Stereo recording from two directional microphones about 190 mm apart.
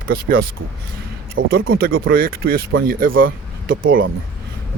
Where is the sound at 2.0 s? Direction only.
55° right (ahead or behind).